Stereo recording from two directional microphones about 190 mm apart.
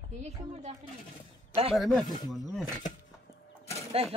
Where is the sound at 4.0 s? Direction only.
30° right (ahead or behind).